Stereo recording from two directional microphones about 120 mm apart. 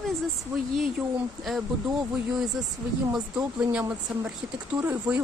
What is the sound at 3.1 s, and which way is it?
Speech, 10° right (ahead or behind).